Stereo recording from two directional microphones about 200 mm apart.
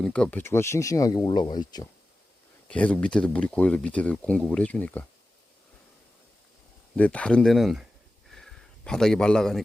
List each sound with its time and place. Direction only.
0.0 s speech: 5° left (ahead or behind); by 1.9 s 20° left (ahead or behind)
2.6 s speech: 5° left (ahead or behind)
6.9 s speech: 5° left (ahead or behind)
8.3 s a sound: centre (ahead or behind)